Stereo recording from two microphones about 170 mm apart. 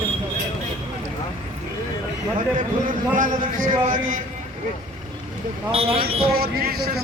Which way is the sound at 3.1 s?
50° right (ahead or behind).